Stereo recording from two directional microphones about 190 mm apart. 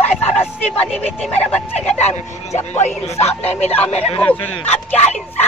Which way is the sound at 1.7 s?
35° left (ahead or behind).